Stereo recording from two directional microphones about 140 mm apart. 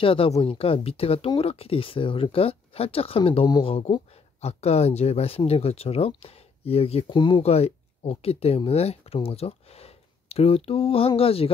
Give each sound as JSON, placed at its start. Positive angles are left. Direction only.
{"t": 0.0, "sound": "speech", "side_deg": 40}
{"t": 7.2, "sound": "speech", "side_deg": 35}
{"t": 7.4, "sound": "speech", "side_deg": 50}